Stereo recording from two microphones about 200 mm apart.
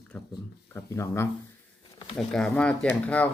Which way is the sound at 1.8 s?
20° left (ahead or behind).